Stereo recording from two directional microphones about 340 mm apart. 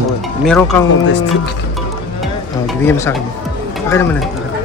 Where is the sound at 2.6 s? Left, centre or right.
Centre.